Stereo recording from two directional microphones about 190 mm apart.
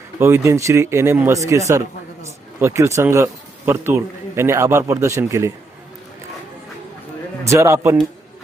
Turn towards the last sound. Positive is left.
turn(degrees=-15)  # may be behind; listen again after turning